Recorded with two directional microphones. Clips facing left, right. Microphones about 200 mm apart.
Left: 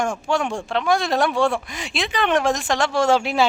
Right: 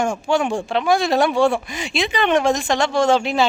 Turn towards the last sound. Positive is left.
turn(degrees=5)  # may be behind; listen again after turning